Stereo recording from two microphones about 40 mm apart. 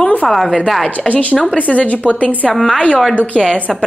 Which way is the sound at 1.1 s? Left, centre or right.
Left.